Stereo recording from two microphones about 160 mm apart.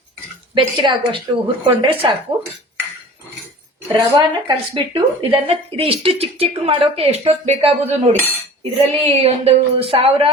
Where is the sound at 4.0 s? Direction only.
35° right (ahead or behind).